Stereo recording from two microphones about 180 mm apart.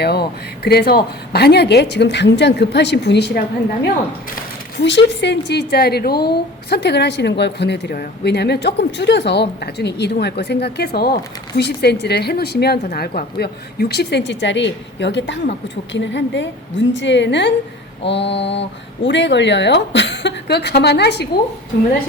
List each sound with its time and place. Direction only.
0.0 s a woman's voice: 60° left (ahead or behind)
4.8 s a woman's voice: 80° left